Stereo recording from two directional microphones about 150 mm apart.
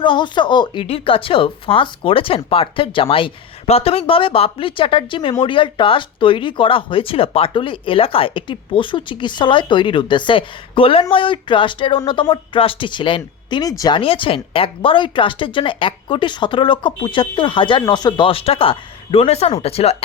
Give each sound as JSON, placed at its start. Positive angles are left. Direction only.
{"t": 0.0, "sound": "speech", "side_deg": 30}